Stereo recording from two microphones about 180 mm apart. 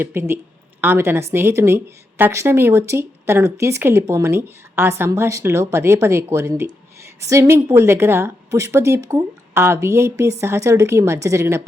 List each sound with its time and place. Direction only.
0.0 s a woman's voice: 15° right (ahead or behind)